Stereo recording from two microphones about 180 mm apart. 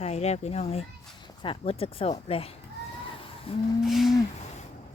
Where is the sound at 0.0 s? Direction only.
35° left (ahead or behind).